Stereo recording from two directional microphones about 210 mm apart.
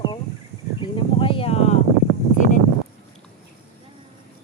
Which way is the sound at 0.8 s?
25° left (ahead or behind).